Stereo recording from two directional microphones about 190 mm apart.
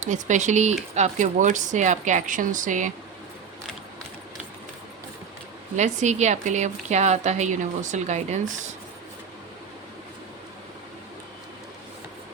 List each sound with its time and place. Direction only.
0.0 s a woman's voice: 40° right (ahead or behind)
5.7 s a woman's voice: 40° right (ahead or behind)